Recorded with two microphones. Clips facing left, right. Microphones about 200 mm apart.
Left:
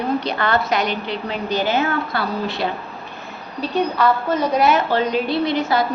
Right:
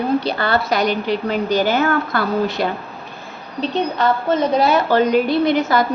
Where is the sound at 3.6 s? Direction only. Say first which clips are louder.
Even; 25° right (ahead or behind).